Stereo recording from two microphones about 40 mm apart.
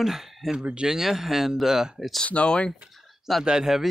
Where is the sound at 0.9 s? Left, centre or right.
Centre.